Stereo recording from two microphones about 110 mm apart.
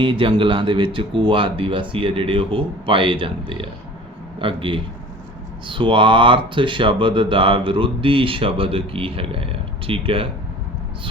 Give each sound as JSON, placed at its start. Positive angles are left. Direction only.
{"t": 0.0, "sound": "speech", "side_deg": -50}